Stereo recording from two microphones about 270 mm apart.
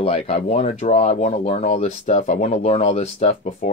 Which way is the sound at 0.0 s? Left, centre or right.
Left.